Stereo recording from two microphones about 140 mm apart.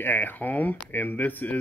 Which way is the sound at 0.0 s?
15° left (ahead or behind).